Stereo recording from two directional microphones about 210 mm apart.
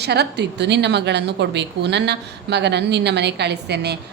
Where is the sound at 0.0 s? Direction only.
50° right (ahead or behind).